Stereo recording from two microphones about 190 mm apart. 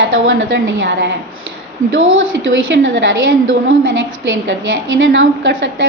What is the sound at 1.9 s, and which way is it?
A woman's voice, 90° right.